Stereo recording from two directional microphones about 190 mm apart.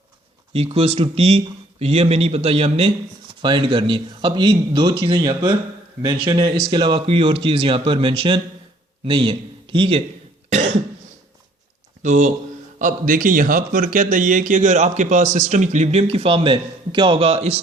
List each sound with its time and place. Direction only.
0.5 s a man's voice: 30° right (ahead or behind)
10.5 s cough: 35° right (ahead or behind)
12.0 s a man's voice: 40° right (ahead or behind)